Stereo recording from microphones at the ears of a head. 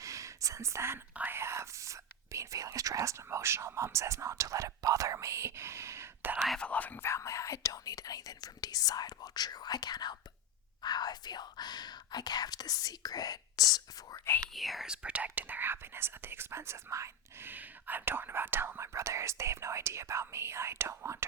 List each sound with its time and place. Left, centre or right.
0.0 s whispering: right
1.4 s speech: right
6.7 s speech: left
14.5 s speech: centre
15.4 s speech: right